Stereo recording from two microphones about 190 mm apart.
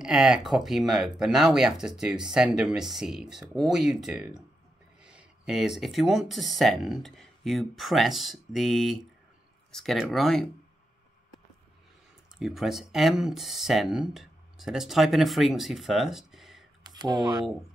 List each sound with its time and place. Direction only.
0.0 s speech: centre (ahead or behind)
12.4 s speech: centre (ahead or behind)
16.8 s speech: 20° right (ahead or behind)